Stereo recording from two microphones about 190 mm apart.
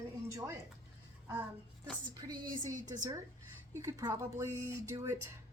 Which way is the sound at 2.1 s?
20° right (ahead or behind).